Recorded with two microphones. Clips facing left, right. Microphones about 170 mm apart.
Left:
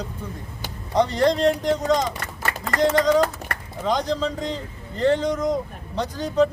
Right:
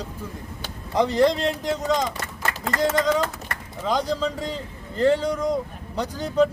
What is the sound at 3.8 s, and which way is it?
Speech, 10° right (ahead or behind).